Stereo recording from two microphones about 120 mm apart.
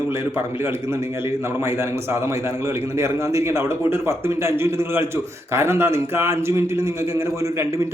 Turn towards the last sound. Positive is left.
turn(degrees=-25)  # may be behind; listen again after turning